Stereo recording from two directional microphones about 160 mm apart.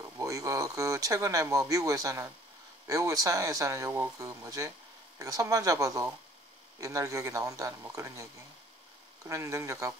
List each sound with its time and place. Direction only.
0.2 s speech: 20° right (ahead or behind)